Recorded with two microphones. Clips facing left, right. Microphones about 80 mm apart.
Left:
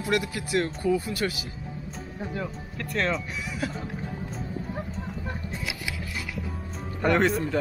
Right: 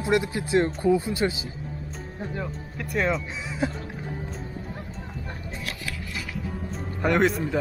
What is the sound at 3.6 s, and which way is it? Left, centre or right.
Speech, right.